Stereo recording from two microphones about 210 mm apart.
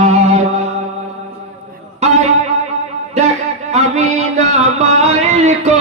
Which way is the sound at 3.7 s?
30° right (ahead or behind).